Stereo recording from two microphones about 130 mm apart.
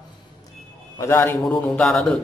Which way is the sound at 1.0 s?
20° left (ahead or behind).